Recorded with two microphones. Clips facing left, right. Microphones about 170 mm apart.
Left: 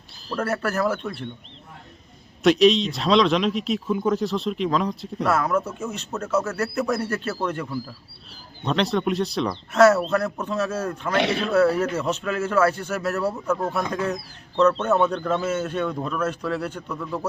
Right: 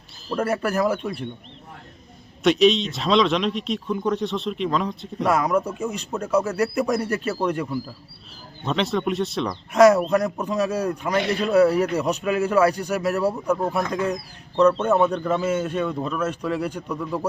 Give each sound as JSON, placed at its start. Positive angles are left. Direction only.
{"t": 0.3, "sound": "speech", "side_deg": 0}
{"t": 0.5, "sound": "speech", "side_deg": -10}
{"t": 2.4, "sound": "speech", "side_deg": 0}
{"t": 5.3, "sound": "speech", "side_deg": -10}
{"t": 9.7, "sound": "speech", "side_deg": -15}
{"t": 11.2, "sound": "a man's voice", "side_deg": 80}
{"t": 11.5, "sound": "speech", "side_deg": -15}